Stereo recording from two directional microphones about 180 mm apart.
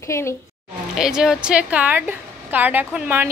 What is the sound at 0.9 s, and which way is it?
A woman's voice, 5° right (ahead or behind).